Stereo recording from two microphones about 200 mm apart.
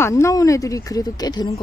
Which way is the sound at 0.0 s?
15° left (ahead or behind).